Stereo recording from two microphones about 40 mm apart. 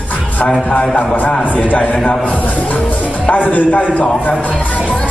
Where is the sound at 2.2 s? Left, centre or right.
Left.